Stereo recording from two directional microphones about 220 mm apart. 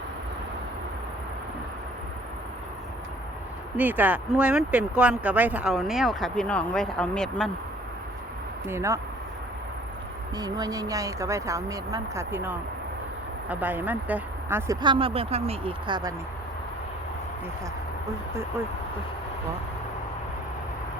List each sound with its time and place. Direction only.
3.8 s speech: 10° right (ahead or behind)
8.6 s speech: 10° right (ahead or behind)
10.3 s speech: 15° right (ahead or behind)